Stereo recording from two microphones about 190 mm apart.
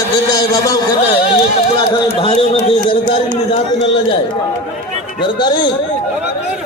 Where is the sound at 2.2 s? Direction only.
30° left (ahead or behind).